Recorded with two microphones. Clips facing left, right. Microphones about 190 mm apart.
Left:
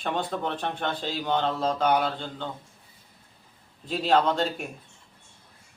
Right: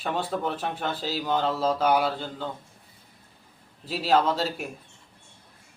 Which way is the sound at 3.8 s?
5° right (ahead or behind).